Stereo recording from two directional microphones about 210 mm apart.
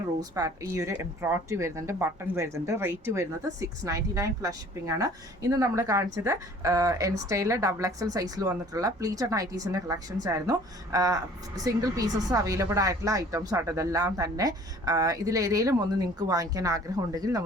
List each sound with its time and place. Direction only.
0.3 s a woman's voice: 15° right (ahead or behind)